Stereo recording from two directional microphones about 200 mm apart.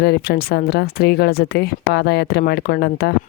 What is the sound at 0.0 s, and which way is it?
Speech, 50° left (ahead or behind).